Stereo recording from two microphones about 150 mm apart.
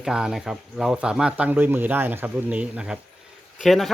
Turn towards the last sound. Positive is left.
turn(degrees=0)  # may be behind; listen again after turning